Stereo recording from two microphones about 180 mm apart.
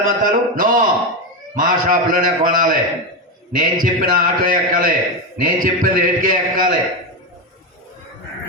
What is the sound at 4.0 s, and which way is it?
A man's voice, 50° right (ahead or behind).